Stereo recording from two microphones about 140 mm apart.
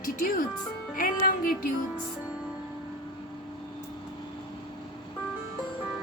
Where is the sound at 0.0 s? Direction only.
75° left (ahead or behind).